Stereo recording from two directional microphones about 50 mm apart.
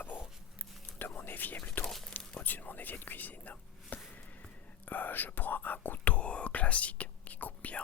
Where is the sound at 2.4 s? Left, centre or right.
Left.